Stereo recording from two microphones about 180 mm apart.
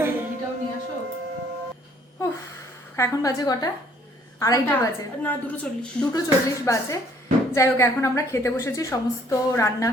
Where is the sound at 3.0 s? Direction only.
20° left (ahead or behind).